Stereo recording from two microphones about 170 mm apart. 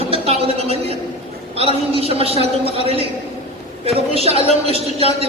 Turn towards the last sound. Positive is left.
turn(degrees=-35)  # may be behind; listen again after turning